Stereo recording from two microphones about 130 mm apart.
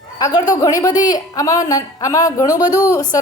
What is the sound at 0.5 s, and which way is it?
Speech, 25° left (ahead or behind).